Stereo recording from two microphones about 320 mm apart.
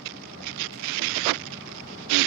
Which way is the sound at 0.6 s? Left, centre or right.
Right.